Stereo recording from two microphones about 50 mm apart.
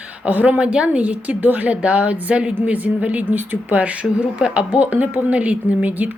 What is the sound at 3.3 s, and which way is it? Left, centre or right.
Speech, right.